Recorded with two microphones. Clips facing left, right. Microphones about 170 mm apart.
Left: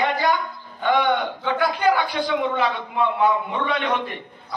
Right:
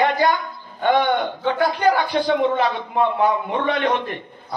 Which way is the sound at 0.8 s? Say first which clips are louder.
Right 2 dB; 45° right (ahead or behind).